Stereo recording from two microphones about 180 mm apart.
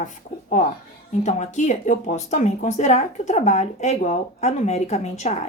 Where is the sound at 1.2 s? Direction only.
40° left (ahead or behind).